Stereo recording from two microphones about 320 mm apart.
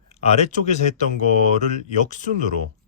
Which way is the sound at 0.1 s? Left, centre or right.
Centre.